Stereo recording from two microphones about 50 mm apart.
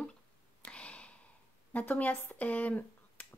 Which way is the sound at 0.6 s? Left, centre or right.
Left.